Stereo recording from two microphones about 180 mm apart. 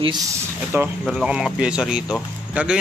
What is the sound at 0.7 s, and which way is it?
Speech, 15° right (ahead or behind).